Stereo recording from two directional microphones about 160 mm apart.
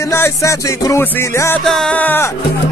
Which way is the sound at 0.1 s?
15° left (ahead or behind).